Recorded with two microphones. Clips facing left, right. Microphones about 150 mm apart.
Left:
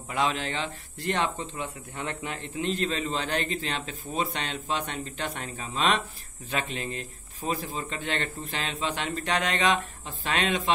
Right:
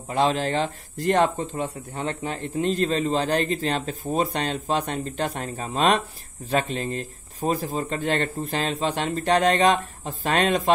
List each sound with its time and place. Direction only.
0.1 s speech: 35° right (ahead or behind)